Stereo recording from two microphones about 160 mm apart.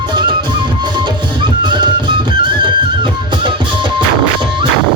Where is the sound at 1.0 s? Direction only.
30° right (ahead or behind).